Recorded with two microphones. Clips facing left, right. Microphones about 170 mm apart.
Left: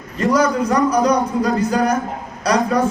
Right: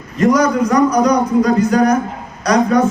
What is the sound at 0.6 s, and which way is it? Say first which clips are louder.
Speech: right 3 dB; 30° left (ahead or behind).